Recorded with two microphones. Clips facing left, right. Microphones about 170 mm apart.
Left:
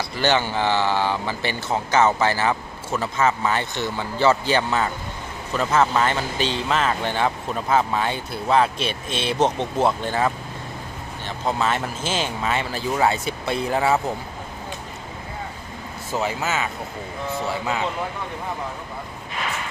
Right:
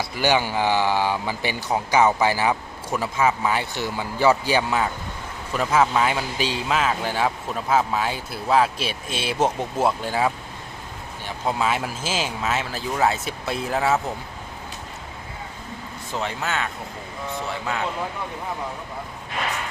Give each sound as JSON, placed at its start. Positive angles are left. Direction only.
{"t": 0.2, "sound": "speech", "side_deg": -10}
{"t": 16.1, "sound": "speech", "side_deg": 5}